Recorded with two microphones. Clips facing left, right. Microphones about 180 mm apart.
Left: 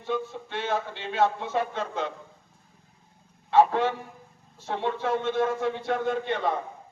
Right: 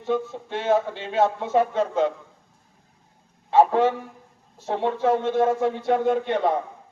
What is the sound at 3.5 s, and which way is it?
A man's voice, 40° right (ahead or behind).